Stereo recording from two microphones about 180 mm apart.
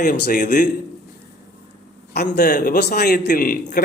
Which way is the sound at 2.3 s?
50° left (ahead or behind).